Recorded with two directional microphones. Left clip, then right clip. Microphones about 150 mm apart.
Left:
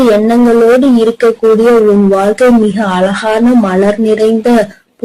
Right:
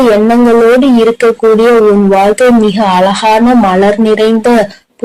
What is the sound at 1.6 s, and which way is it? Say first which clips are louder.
Speech: right 1 dB; 30° right (ahead or behind).